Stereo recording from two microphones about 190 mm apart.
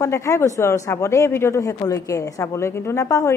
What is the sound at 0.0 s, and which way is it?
Speech, 15° left (ahead or behind).